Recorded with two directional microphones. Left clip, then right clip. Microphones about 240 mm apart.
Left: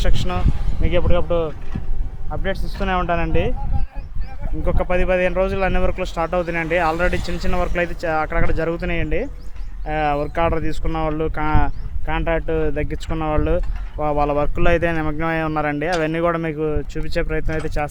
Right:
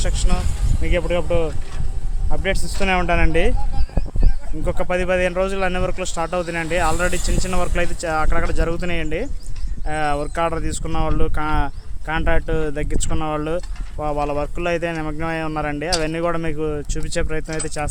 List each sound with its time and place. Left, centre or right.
0.0 s speech: centre
2.3 s speech: centre
4.6 s speech: centre